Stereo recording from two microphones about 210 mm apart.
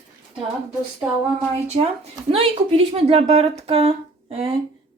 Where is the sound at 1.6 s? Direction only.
30° right (ahead or behind).